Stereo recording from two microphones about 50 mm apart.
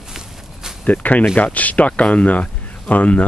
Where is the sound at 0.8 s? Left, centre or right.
Left.